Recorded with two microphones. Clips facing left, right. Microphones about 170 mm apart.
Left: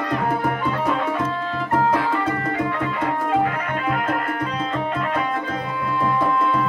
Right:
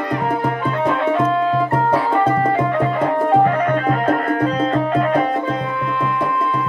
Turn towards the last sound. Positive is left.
turn(degrees=-40)  # may be behind; listen again after turning